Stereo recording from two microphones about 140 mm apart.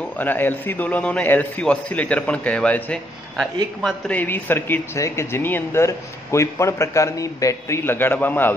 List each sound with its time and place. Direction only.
0.2 s speech: 15° left (ahead or behind)